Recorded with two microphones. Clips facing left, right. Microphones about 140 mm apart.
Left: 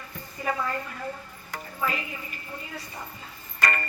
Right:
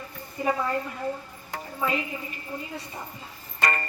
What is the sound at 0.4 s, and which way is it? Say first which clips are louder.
Speech: right 4 dB; 25° right (ahead or behind).